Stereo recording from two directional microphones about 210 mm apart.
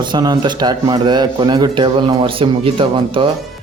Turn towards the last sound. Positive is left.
turn(degrees=-25)  # may be behind; listen again after turning